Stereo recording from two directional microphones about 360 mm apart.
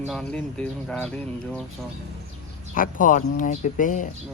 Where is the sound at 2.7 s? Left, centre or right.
Left.